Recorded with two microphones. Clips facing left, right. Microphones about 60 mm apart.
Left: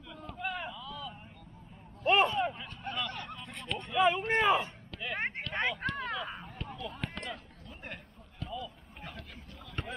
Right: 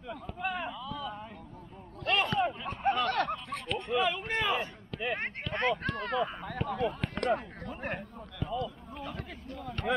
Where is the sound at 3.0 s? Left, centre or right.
Right.